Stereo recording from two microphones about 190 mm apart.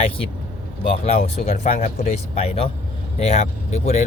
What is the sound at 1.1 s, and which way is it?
Speech, 35° left (ahead or behind).